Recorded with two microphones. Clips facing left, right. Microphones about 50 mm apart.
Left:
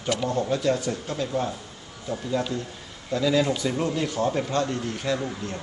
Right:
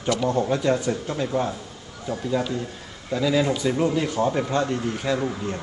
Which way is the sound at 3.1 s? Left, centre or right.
Centre.